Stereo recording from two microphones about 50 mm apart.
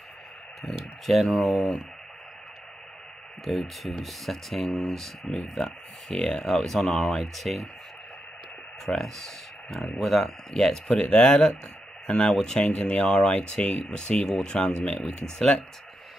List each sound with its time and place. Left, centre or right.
0.6 s speech: centre
3.4 s speech: centre
8.8 s speech: centre